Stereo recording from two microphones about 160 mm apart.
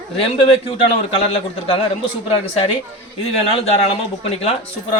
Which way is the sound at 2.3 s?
35° left (ahead or behind).